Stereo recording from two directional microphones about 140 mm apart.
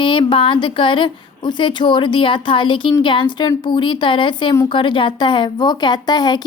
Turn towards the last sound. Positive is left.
turn(degrees=30)  # may be behind; listen again after turning